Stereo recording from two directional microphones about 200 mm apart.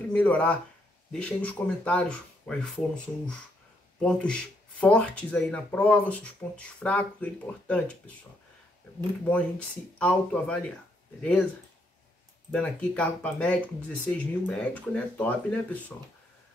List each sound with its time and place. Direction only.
0.1 s speech: 5° left (ahead or behind)
9.3 s speech: 5° left (ahead or behind)
12.4 s speech: 5° left (ahead or behind)